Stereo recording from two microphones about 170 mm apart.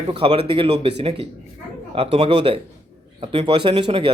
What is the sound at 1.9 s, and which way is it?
Speech, 35° right (ahead or behind).